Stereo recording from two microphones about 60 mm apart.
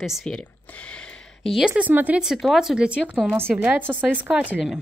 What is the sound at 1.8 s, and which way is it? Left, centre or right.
Speech, right.